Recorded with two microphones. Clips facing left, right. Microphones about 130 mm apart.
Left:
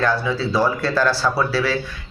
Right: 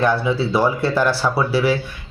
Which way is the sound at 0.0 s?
20° right (ahead or behind).